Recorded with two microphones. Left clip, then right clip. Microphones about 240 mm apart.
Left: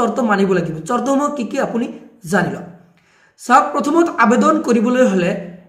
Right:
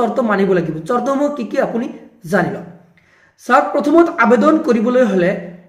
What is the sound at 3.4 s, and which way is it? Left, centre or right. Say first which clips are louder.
Speech: even; left.